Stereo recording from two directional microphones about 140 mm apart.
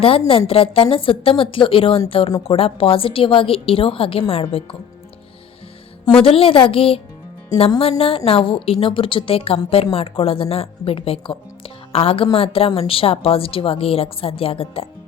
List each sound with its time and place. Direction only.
0.0 s a woman's voice: 40° left (ahead or behind)
6.2 s a woman's voice: 40° left (ahead or behind)